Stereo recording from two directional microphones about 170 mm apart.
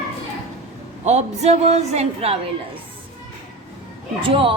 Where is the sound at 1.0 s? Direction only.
40° right (ahead or behind).